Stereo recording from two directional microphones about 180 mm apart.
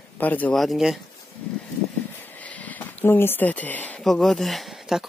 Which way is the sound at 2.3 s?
10° left (ahead or behind).